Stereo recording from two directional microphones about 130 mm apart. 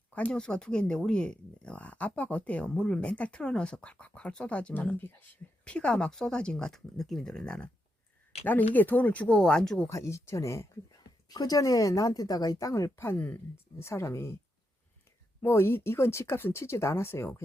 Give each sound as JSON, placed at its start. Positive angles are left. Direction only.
{"t": 0.1, "sound": "speech", "side_deg": 10}
{"t": 8.7, "sound": "speech", "side_deg": 15}
{"t": 9.9, "sound": "speech", "side_deg": 20}
{"t": 15.4, "sound": "speech", "side_deg": 20}